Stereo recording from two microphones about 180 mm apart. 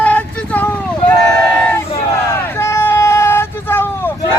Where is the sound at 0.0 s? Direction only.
10° left (ahead or behind).